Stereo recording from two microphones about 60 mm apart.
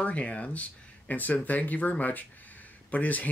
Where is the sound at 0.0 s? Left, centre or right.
Left.